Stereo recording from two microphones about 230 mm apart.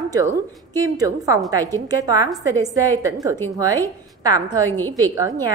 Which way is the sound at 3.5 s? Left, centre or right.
Centre.